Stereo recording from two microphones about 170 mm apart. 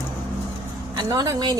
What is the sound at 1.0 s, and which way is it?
Speech, 20° right (ahead or behind).